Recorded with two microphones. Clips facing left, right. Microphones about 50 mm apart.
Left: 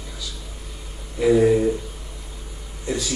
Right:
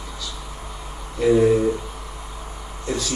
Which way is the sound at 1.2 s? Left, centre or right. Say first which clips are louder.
Even; centre.